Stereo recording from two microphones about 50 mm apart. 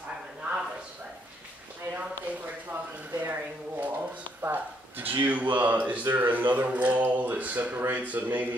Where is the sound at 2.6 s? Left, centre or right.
Right.